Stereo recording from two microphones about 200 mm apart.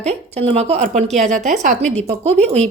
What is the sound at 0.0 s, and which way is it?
A woman's voice, 30° right (ahead or behind).